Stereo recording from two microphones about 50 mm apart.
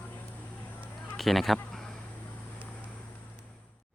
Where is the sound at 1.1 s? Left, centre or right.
Centre.